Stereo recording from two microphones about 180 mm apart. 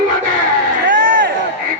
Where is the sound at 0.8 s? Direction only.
85° right.